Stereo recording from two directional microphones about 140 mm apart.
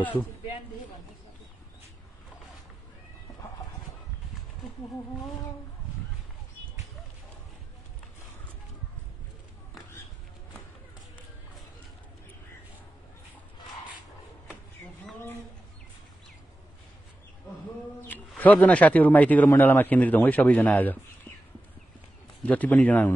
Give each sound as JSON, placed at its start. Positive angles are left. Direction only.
{"t": 18.4, "sound": "a man's voice", "side_deg": 10}
{"t": 22.4, "sound": "a man's voice", "side_deg": 10}